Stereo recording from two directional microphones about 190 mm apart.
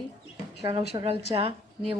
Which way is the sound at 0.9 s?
25° right (ahead or behind).